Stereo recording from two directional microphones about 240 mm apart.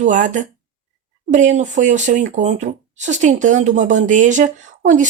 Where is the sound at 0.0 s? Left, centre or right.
Right.